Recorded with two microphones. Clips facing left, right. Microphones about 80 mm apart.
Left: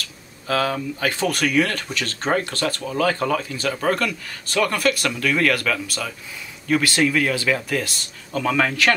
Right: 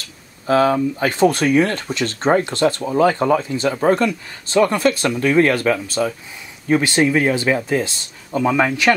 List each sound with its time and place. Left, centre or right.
0.5 s speech: right